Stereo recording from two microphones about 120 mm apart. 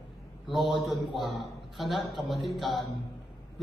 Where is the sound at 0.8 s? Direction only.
Centre (ahead or behind).